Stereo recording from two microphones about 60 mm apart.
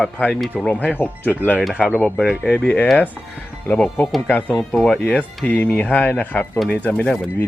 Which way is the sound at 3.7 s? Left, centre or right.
Centre.